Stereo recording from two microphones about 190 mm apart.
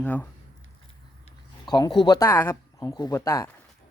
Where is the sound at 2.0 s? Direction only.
20° left (ahead or behind).